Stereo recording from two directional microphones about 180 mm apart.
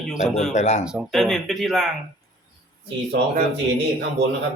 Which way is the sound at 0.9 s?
Centre (ahead or behind).